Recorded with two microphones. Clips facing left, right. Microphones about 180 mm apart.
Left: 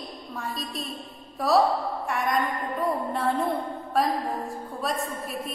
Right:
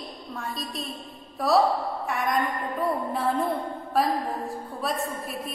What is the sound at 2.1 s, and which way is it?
Music, centre (ahead or behind).